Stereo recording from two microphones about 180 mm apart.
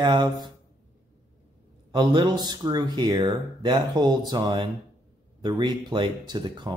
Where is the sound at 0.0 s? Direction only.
25° right (ahead or behind).